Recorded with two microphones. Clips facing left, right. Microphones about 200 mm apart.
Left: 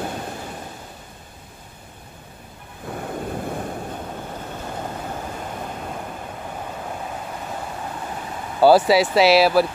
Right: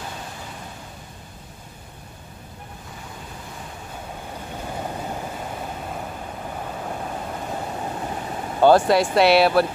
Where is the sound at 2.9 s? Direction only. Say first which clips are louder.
Left 14 dB; 55° left (ahead or behind).